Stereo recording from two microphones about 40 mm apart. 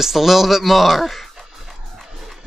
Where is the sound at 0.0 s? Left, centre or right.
Centre.